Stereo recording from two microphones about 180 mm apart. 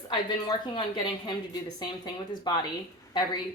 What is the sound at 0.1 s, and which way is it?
Speech, 25° left (ahead or behind).